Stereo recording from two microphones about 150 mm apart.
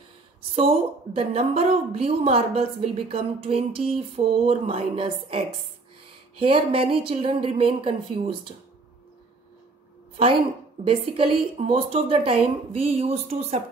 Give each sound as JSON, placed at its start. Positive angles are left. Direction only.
{"t": 0.6, "sound": "a woman's voice", "side_deg": -40}
{"t": 10.8, "sound": "a woman's voice", "side_deg": -40}